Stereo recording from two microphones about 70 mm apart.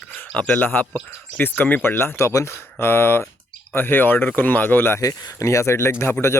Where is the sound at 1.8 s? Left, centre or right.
Left.